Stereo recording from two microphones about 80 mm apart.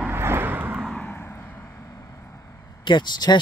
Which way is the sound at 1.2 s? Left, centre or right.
Left.